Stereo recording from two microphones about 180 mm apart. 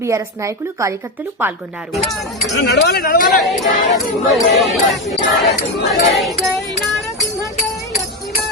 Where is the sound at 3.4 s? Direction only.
Centre (ahead or behind).